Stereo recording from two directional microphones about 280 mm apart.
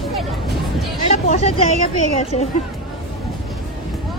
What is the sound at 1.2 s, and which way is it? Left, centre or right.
Speech, left.